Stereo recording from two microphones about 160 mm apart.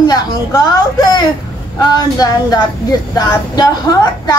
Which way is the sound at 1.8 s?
25° left (ahead or behind).